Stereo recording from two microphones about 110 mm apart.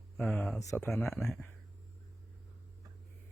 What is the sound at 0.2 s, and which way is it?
Speech, 10° left (ahead or behind).